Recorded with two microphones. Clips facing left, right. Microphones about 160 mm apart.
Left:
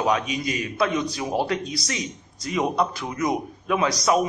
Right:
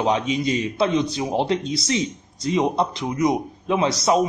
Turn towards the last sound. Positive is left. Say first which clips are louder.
# right 2 dB
turn(degrees=-25)  # may be behind; listen again after turning